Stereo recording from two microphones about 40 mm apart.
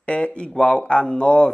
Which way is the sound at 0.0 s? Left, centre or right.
Left.